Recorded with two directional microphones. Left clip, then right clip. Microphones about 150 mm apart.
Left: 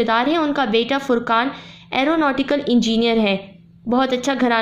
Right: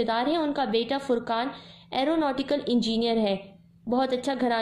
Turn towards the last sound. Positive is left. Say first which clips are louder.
# left 7 dB
turn(degrees=30)  # may be behind; listen again after turning